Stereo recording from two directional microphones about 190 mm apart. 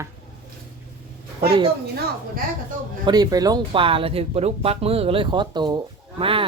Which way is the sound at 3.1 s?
20° right (ahead or behind).